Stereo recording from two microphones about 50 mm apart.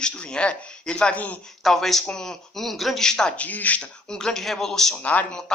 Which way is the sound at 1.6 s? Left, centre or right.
Centre.